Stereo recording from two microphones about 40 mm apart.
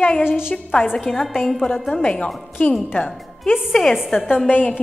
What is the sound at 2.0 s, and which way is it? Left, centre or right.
Speech, left.